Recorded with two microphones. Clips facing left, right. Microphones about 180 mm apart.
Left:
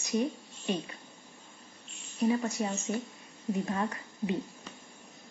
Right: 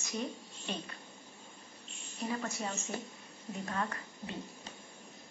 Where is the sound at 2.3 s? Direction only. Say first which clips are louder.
Left 8 dB; 20° left (ahead or behind).